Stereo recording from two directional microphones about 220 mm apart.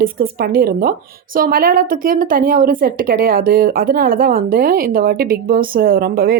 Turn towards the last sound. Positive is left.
turn(degrees=-40)  # may be behind; listen again after turning